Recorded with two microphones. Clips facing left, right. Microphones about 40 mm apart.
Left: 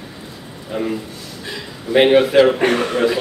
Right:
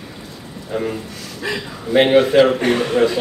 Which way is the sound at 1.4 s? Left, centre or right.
Right.